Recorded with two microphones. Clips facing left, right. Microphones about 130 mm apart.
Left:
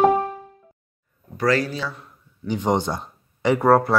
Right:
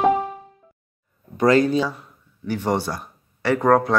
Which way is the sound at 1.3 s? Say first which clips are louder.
Right 5 dB; 20° right (ahead or behind).